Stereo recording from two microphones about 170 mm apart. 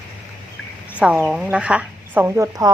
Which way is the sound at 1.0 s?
5° right (ahead or behind).